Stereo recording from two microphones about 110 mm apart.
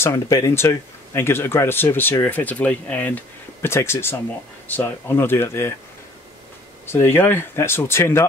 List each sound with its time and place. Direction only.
0.1 s speech: 35° left (ahead or behind)
0.6 s speech: 20° left (ahead or behind)
6.9 s speech: 20° left (ahead or behind)